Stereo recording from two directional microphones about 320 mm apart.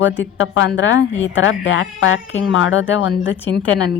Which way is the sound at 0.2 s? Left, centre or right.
Left.